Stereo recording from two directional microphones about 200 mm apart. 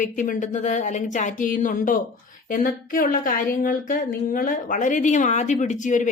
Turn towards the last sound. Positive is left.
turn(degrees=40)  # may be behind; listen again after turning